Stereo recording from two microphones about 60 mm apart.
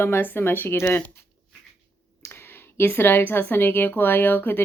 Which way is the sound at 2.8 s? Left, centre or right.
Left.